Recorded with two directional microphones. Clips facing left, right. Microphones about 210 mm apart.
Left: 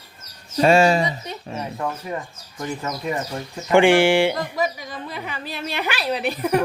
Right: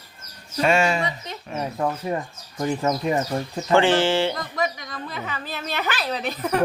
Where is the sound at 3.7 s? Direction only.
15° left (ahead or behind).